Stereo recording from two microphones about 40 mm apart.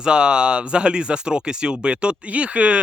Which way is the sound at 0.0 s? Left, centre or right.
Right.